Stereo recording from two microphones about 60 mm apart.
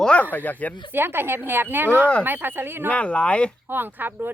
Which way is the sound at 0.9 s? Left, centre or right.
Right.